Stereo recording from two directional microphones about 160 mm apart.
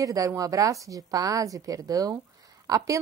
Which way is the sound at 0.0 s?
20° right (ahead or behind).